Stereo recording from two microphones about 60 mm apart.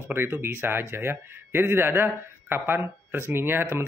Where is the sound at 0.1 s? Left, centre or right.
Right.